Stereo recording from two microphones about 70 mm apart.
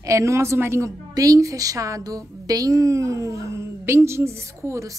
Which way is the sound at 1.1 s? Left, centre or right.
Right.